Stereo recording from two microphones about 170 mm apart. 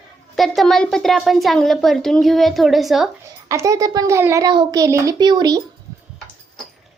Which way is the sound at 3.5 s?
20° right (ahead or behind).